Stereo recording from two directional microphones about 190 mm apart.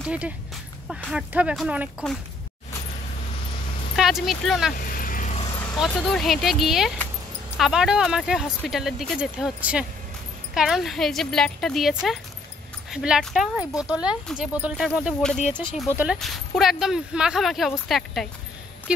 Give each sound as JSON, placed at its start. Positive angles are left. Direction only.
{"t": 0.0, "sound": "speech", "side_deg": -5}
{"t": 3.9, "sound": "speech", "side_deg": 0}
{"t": 4.7, "sound": "vehicle", "side_deg": 45}
{"t": 5.9, "sound": "speech", "side_deg": 0}